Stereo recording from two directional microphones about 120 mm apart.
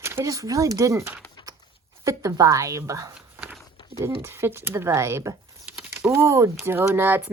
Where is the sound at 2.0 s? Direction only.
25° right (ahead or behind).